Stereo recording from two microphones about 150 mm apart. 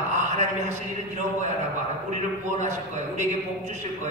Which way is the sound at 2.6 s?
50° right (ahead or behind).